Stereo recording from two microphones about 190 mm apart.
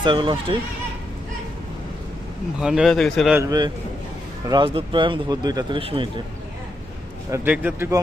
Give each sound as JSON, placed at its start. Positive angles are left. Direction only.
{"t": 0.0, "sound": "speech", "side_deg": -25}
{"t": 2.6, "sound": "a man's voice", "side_deg": -5}
{"t": 3.3, "sound": "speech", "side_deg": -20}
{"t": 7.3, "sound": "a man's voice", "side_deg": -10}